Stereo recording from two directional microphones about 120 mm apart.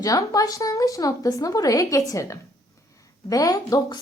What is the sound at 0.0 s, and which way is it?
A woman's voice, 30° left (ahead or behind).